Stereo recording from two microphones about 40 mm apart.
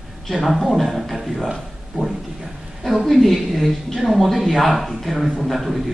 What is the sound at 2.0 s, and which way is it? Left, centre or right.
Speech, centre.